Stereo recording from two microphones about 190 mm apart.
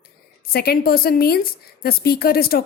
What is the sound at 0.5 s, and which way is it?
A woman's voice, 55° left (ahead or behind).